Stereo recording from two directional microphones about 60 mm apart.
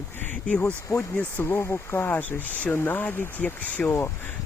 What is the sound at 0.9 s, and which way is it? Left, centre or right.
Speech, left.